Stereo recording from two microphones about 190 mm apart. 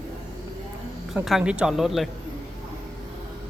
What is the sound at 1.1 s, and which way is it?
Speech, centre (ahead or behind).